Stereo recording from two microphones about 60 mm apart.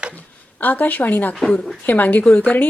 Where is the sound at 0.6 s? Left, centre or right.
Left.